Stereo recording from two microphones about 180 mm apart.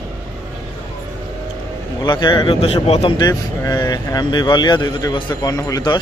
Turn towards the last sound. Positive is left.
turn(degrees=20)  # may be behind; listen again after turning